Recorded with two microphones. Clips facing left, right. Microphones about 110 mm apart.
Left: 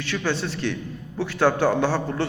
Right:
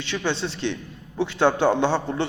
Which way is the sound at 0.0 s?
20° right (ahead or behind).